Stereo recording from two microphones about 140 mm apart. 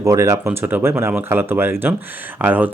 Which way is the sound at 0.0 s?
25° right (ahead or behind).